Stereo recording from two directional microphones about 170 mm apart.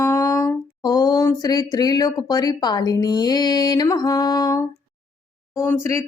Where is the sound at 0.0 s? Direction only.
15° left (ahead or behind).